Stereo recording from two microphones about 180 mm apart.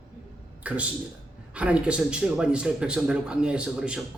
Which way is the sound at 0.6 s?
10° right (ahead or behind).